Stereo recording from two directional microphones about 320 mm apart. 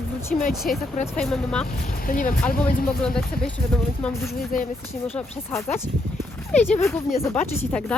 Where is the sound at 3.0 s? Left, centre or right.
Centre.